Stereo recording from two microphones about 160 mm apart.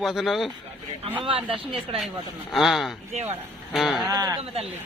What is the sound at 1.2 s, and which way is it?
Speech, 35° right (ahead or behind).